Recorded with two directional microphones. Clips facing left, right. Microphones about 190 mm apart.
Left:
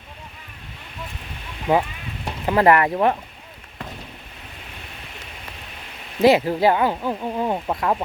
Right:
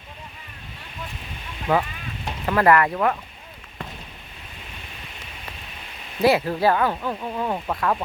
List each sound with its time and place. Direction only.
1.7 s speech: 15° left (ahead or behind)
6.2 s speech: 20° left (ahead or behind)